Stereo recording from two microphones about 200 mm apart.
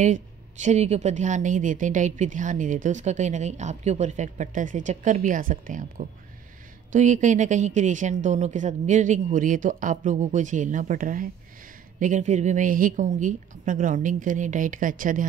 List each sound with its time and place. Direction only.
0.0 s speech: 35° right (ahead or behind)